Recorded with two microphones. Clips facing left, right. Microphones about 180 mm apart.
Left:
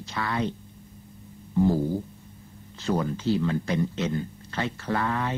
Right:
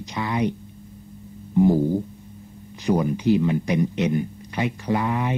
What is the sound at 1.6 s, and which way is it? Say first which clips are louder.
Speech: right 5 dB; 15° right (ahead or behind).